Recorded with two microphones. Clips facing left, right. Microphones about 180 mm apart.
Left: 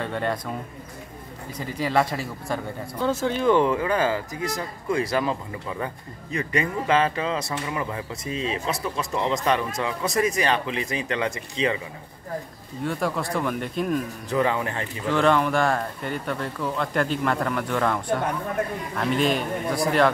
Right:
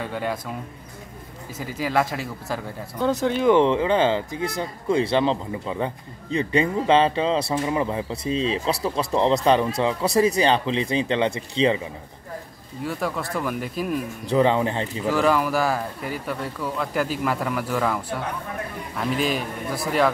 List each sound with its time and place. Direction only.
0.0 s speech: 5° right (ahead or behind)
1.6 s speech: 5° right (ahead or behind)
3.0 s speech: 15° right (ahead or behind); by 11.8 s 30° right (ahead or behind)
12.8 s speech: centre (ahead or behind)
14.3 s speech: 30° right (ahead or behind)
15.0 s speech: 5° right (ahead or behind)